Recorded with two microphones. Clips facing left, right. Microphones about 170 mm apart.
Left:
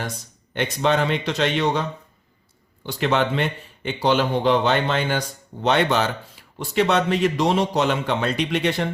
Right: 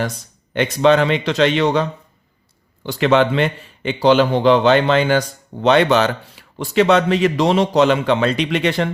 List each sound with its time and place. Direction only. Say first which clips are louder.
0.5 s a man's voice: right 7 dB; 90° right
2.8 s a man's voice: right 6 dB; 90° right